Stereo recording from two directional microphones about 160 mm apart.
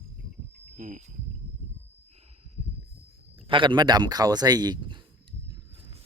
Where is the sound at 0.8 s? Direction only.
50° right (ahead or behind).